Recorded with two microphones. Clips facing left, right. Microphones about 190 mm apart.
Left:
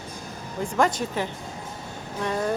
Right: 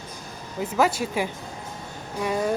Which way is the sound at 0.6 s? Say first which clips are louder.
Right 1 dB; 5° right (ahead or behind).